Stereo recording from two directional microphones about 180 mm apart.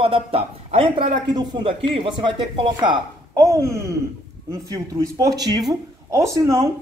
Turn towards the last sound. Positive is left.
turn(degrees=-15)  # may be behind; listen again after turning